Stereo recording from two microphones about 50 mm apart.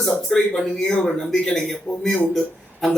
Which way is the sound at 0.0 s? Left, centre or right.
Centre.